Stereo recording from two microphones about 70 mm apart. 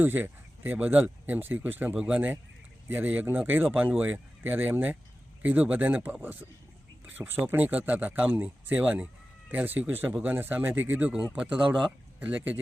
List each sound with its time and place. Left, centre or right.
0.0 s speech: right
11.1 s speech: centre
12.2 s speech: right